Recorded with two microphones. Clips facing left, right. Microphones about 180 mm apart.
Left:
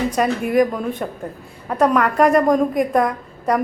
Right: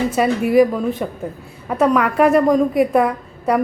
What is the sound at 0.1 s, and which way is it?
A woman's voice, 5° right (ahead or behind).